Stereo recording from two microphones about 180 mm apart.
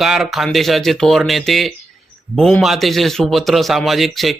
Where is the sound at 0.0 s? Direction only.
Centre (ahead or behind).